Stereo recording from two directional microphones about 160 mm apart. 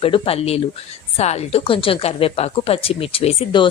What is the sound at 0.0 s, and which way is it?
Speech, 35° left (ahead or behind).